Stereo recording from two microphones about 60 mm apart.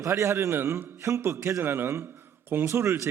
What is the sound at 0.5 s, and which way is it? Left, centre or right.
Speech, right.